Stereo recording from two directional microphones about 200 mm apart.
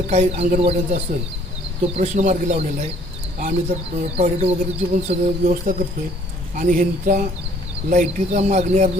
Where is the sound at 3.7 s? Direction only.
30° right (ahead or behind).